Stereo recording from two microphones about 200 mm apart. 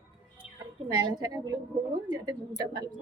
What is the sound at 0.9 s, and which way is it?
Speech, 20° right (ahead or behind).